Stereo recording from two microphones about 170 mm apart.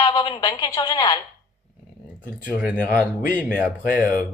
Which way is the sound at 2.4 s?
5° right (ahead or behind).